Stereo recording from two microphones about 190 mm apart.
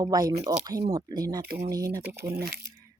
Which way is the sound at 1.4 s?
50° right (ahead or behind).